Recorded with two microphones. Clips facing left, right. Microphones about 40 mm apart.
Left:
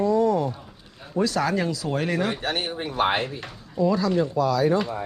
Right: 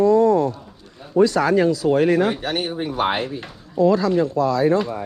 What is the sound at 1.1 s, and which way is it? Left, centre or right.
Speech, centre.